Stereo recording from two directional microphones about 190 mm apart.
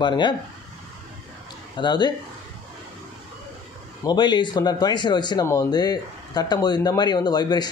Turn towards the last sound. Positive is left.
turn(degrees=20)  # may be behind; listen again after turning